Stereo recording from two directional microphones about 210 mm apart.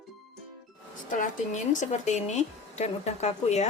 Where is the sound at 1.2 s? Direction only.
35° left (ahead or behind).